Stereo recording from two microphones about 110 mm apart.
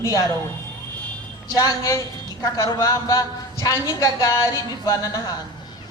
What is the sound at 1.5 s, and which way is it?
A man's voice, 25° left (ahead or behind).